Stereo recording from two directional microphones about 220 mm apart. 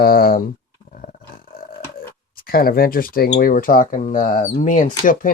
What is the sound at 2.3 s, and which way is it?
Speech, 40° left (ahead or behind).